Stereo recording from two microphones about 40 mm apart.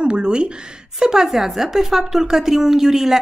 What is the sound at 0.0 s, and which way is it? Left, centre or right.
Speech, right.